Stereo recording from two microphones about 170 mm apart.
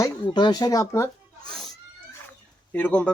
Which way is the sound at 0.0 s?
25° left (ahead or behind).